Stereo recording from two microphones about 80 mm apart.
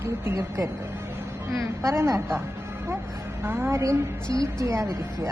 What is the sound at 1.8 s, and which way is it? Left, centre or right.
Speech, right.